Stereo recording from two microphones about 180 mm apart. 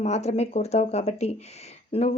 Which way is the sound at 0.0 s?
40° left (ahead or behind).